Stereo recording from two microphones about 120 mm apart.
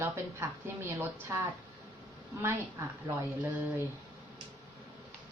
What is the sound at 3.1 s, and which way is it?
Speech, 40° right (ahead or behind).